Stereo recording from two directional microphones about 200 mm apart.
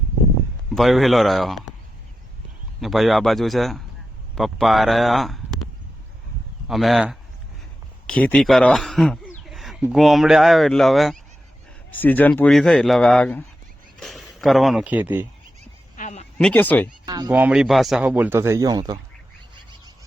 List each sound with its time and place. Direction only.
0.7 s speech: centre (ahead or behind)
2.8 s speech: centre (ahead or behind)
6.7 s speech: centre (ahead or behind)
9.4 s a sound: centre (ahead or behind)
9.9 s speech: centre (ahead or behind)
16.0 s a sound: 35° left (ahead or behind)
16.4 s speech: 5° left (ahead or behind)
17.1 s speech: 20° right (ahead or behind)